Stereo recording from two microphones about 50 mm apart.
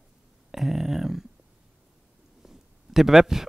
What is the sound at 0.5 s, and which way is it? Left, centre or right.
Speech, centre.